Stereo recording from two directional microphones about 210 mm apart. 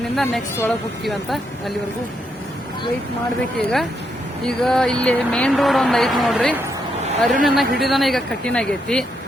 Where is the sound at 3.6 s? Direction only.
Centre (ahead or behind).